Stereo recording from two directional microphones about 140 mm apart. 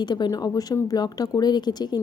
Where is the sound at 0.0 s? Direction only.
30° left (ahead or behind).